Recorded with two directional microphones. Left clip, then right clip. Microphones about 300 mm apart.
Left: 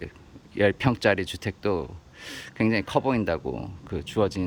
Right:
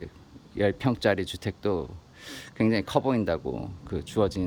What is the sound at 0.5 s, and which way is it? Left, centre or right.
Speech, centre.